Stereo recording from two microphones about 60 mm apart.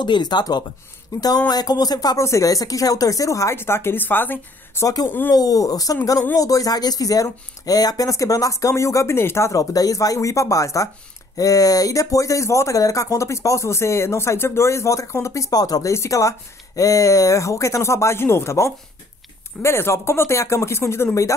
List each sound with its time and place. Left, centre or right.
1.1 s speech: left
2.2 s speech: left
3.5 s speech: left
4.8 s speech: left
5.3 s speech: left
6.3 s speech: left
9.5 s speech: left
11.3 s speech: left
15.9 s speech: left